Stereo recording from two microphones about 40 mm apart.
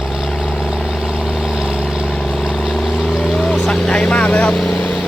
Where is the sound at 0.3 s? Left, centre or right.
Centre.